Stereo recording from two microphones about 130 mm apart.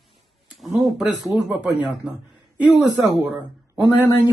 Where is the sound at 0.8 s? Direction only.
5° right (ahead or behind).